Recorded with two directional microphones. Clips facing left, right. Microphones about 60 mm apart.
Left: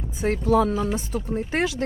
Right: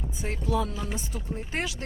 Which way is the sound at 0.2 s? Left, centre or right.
Left.